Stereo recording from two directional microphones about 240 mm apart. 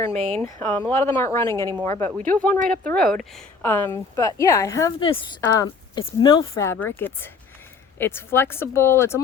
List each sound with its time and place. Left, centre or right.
0.1 s speech: right
0.3 s a woman's voice: centre